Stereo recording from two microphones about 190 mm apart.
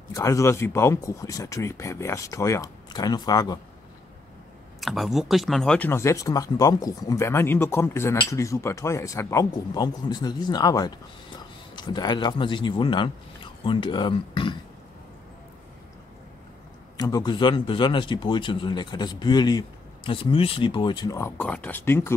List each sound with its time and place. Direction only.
0.1 s speech: 15° left (ahead or behind)
4.7 s speech: centre (ahead or behind); by 14.6 s 25° left (ahead or behind)
16.9 s speech: 20° left (ahead or behind)